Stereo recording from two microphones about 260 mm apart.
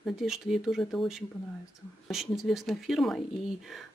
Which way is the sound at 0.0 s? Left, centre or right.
Centre.